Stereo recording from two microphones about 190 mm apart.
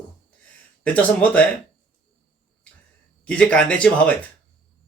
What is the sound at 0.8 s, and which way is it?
Speech, 5° left (ahead or behind).